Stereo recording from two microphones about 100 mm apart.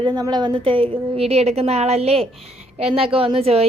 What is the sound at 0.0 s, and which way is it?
A woman's voice, 45° right (ahead or behind).